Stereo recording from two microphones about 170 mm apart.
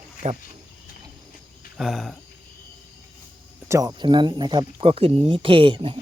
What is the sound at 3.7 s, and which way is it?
Speech, 20° right (ahead or behind).